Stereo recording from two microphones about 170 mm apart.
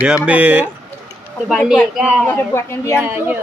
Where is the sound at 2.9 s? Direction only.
10° right (ahead or behind).